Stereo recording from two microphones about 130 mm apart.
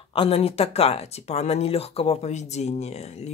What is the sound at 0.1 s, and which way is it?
Speech, 45° left (ahead or behind).